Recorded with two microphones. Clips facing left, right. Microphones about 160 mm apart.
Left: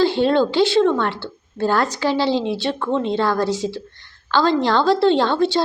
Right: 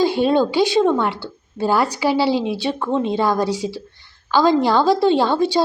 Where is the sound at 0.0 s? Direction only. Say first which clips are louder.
Even; 10° right (ahead or behind).